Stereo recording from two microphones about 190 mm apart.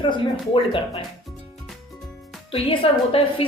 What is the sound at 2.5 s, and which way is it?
Speech, 30° left (ahead or behind).